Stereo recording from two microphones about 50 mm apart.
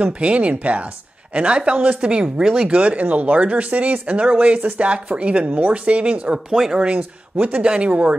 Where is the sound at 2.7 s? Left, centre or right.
Right.